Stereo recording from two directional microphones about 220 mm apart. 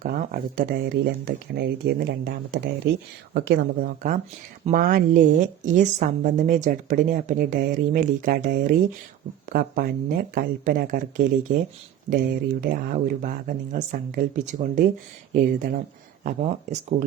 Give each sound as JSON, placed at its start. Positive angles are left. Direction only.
{"t": 0.0, "sound": "a woman's voice", "side_deg": -40}